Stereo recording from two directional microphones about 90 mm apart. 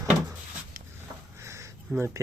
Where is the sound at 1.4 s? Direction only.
30° right (ahead or behind).